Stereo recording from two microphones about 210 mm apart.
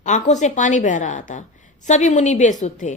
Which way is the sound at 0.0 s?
35° left (ahead or behind).